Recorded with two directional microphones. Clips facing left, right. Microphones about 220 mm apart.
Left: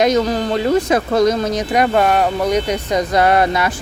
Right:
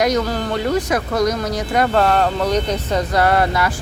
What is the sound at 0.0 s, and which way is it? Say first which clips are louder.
Speech: left 3 dB; 20° left (ahead or behind).